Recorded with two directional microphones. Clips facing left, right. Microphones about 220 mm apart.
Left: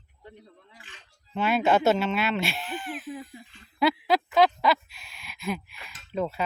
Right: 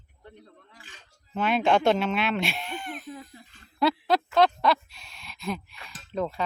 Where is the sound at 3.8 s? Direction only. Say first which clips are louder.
Even; centre (ahead or behind).